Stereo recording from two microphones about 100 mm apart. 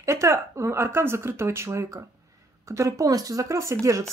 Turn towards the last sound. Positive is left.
turn(degrees=-30)  # may be behind; listen again after turning